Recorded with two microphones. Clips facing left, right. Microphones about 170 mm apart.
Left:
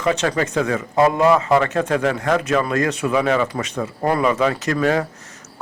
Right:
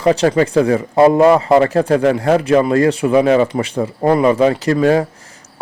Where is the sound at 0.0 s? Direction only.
35° right (ahead or behind).